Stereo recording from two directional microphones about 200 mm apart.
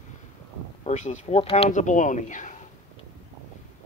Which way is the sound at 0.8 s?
35° left (ahead or behind).